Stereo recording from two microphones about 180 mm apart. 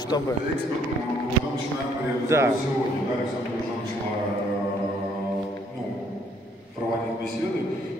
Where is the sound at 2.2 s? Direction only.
15° right (ahead or behind).